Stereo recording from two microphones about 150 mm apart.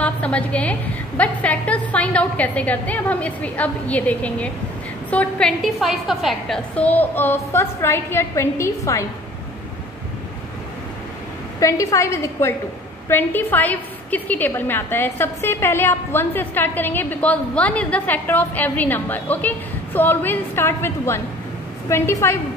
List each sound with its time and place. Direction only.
0.0 s a woman's voice: 10° left (ahead or behind)
11.6 s a woman's voice: 20° left (ahead or behind)